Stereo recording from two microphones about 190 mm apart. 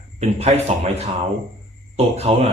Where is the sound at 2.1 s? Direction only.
35° right (ahead or behind).